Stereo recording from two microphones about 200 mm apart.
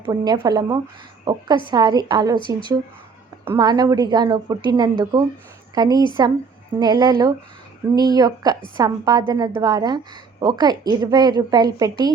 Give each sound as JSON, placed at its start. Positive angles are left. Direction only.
{"t": 0.0, "sound": "a woman's voice", "side_deg": -20}
{"t": 3.6, "sound": "a woman's voice", "side_deg": -20}